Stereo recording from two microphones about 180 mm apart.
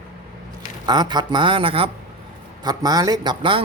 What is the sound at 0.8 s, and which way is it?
Speech, 25° right (ahead or behind).